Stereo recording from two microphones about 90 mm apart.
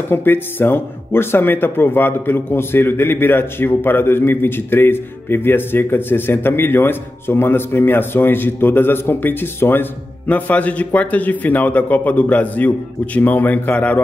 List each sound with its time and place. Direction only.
0.1 s speech: 25° left (ahead or behind)